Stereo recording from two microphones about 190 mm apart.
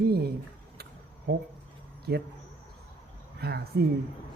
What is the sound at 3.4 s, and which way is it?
Speech, 55° right (ahead or behind).